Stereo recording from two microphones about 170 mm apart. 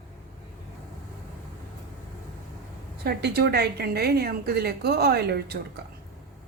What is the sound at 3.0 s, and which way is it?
A woman's voice, 70° right (ahead or behind).